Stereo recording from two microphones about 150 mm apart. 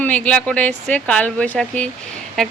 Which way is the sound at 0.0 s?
10° left (ahead or behind).